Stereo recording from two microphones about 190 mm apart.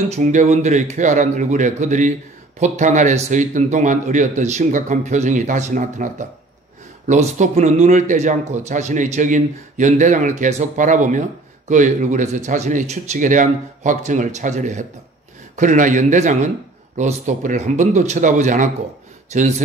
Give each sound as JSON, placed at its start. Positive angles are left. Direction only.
{"t": 0.1, "sound": "speech", "side_deg": -40}